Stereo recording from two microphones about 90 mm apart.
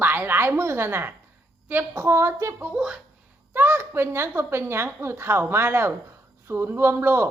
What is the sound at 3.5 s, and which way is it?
A woman's voice, 25° right (ahead or behind).